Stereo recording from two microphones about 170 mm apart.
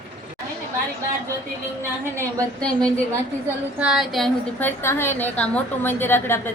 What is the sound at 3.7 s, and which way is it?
A woman's voice, 5° right (ahead or behind).